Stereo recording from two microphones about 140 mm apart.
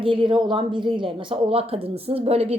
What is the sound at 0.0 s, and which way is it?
A woman's voice, 35° right (ahead or behind).